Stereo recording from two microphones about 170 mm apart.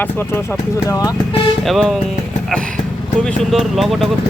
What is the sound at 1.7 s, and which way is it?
Speech, centre (ahead or behind).